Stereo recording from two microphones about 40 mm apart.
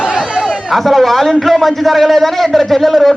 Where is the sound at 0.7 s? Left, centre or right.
Centre.